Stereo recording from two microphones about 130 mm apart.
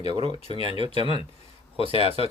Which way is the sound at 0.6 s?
45° left (ahead or behind).